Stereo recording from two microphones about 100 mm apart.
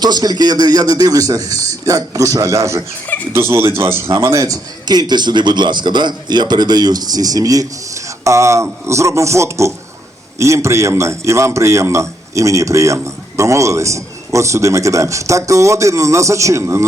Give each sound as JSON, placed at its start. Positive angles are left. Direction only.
{"t": 0.0, "sound": "a man's voice", "side_deg": -40}
{"t": 4.9, "sound": "a man's voice", "side_deg": -45}